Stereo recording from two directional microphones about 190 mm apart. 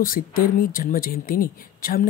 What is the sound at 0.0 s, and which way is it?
Speech, 45° left (ahead or behind).